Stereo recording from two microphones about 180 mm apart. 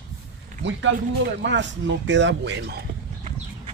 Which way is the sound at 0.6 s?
90° right.